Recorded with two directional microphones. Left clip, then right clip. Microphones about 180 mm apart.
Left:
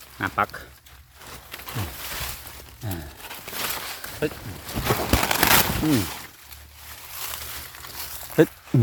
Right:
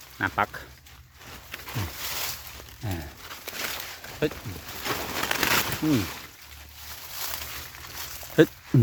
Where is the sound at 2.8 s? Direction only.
Centre (ahead or behind).